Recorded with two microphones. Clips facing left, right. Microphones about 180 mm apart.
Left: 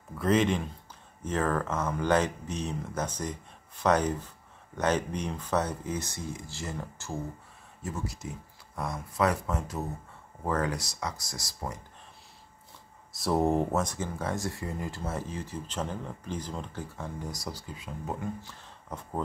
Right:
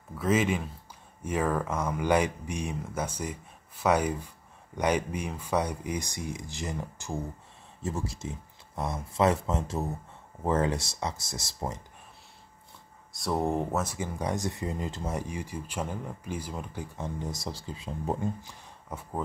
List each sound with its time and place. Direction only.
0.2 s speech: 5° right (ahead or behind)
7.8 s speech: 25° right (ahead or behind)
13.1 s speech: centre (ahead or behind); by 18.3 s 30° right (ahead or behind)
18.4 s speech: 10° right (ahead or behind)